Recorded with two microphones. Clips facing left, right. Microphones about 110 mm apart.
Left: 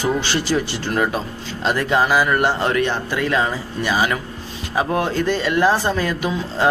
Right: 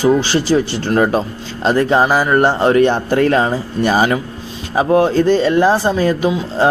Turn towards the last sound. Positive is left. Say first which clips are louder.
# right 6 dB
turn(degrees=-30)  # may be behind; listen again after turning